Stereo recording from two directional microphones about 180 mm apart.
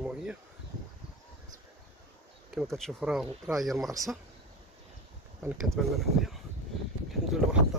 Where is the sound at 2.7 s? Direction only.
Centre (ahead or behind).